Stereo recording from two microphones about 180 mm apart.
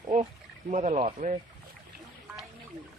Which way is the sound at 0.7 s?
40° right (ahead or behind).